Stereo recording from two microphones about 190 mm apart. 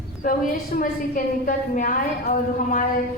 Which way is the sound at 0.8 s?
45° left (ahead or behind).